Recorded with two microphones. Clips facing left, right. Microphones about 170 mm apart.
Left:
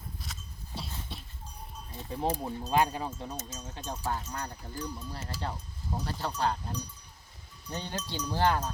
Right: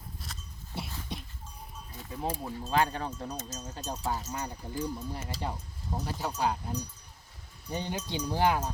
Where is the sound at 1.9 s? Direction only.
30° left (ahead or behind).